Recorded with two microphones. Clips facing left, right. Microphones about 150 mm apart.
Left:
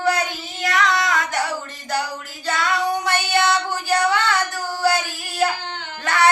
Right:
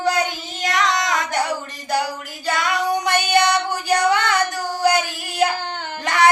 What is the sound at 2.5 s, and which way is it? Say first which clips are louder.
Female singing: right 1 dB; 15° right (ahead or behind).